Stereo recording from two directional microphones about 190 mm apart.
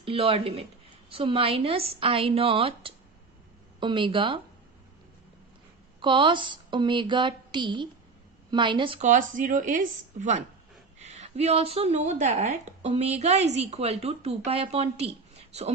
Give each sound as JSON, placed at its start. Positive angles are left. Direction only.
{"t": 0.0, "sound": "speech", "side_deg": -30}
{"t": 6.0, "sound": "speech", "side_deg": -25}
{"t": 9.0, "sound": "a woman's voice", "side_deg": -45}